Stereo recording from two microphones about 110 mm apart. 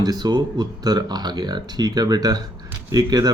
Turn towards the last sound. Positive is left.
turn(degrees=-35)  # may be behind; listen again after turning